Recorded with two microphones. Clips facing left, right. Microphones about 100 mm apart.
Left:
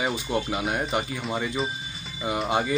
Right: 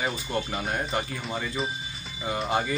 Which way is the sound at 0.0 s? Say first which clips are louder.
Left 3 dB; 5° left (ahead or behind).